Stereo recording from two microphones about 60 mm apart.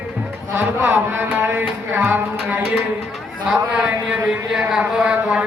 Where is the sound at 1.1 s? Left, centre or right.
Right.